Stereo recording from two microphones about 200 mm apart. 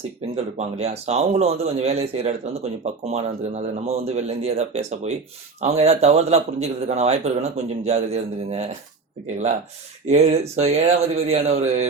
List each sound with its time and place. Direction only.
0.3 s a man's voice: 30° right (ahead or behind)
10.1 s a man's voice: 30° right (ahead or behind)